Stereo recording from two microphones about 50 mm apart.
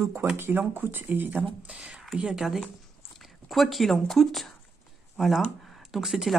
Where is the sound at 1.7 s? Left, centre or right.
Right.